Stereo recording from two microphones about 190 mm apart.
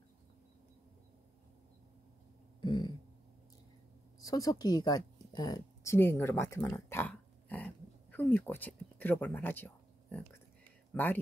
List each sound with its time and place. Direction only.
2.6 s throat clearing: 25° left (ahead or behind)
4.2 s a woman's voice: 20° left (ahead or behind)